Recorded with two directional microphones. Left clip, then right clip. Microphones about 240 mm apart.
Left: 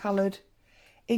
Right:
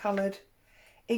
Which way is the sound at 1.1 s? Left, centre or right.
Left.